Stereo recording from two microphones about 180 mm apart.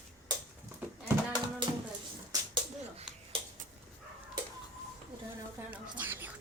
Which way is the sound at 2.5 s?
30° right (ahead or behind).